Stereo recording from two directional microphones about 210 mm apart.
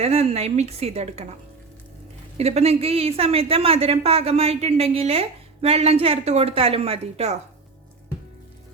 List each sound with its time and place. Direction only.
0.0 s a woman's voice: 30° right (ahead or behind)
2.4 s a woman's voice: 30° right (ahead or behind)